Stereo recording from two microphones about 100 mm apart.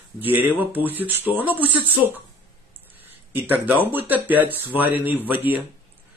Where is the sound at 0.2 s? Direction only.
20° right (ahead or behind).